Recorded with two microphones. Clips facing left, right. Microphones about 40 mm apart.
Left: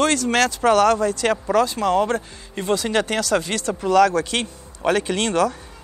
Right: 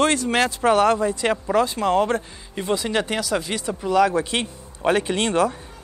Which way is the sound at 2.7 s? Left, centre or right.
Centre.